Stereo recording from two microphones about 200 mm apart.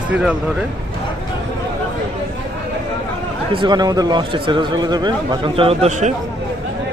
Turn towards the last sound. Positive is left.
turn(degrees=-30)  # may be behind; listen again after turning